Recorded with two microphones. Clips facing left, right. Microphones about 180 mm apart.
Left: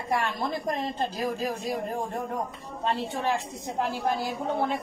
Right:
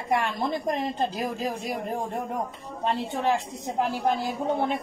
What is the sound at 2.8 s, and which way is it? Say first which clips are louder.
A woman's voice: right 2 dB; 15° right (ahead or behind).